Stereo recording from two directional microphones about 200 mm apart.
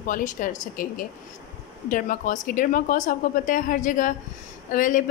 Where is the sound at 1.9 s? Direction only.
40° left (ahead or behind).